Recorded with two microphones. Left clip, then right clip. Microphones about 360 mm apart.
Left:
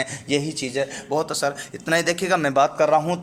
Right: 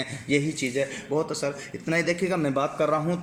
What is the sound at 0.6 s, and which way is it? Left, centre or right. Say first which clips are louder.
Speech: left 2 dB; left.